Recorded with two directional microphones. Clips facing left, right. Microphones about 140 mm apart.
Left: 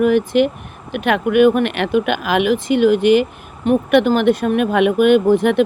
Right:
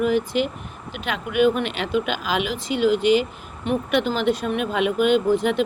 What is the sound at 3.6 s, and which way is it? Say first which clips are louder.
Speech: left 8 dB; 45° left (ahead or behind).